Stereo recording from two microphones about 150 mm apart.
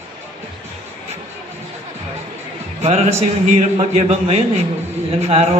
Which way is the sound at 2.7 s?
45° right (ahead or behind).